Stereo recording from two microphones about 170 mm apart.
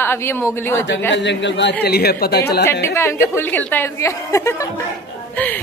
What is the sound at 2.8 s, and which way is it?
A woman's voice, 15° left (ahead or behind).